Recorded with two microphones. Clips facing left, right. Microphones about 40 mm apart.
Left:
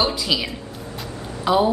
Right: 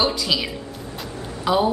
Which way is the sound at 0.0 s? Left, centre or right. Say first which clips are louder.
Even; centre.